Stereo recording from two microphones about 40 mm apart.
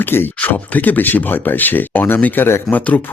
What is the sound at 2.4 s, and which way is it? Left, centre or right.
Speech, left.